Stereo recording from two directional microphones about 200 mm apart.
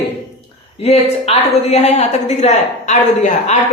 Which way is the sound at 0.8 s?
30° left (ahead or behind).